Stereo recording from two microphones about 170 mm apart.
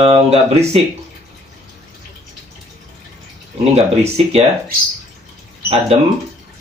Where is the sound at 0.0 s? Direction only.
35° right (ahead or behind).